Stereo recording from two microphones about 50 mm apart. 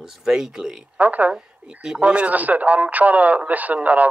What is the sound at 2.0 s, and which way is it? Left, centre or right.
Speech, right.